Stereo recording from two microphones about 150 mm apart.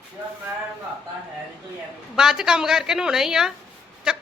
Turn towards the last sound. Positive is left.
turn(degrees=-5)  # may be behind; listen again after turning